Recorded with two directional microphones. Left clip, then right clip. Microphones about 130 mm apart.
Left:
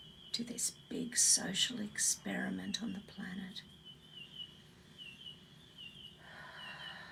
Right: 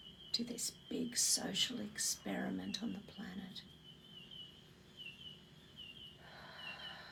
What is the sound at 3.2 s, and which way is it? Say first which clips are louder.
Speech: left 3 dB; 40° left (ahead or behind).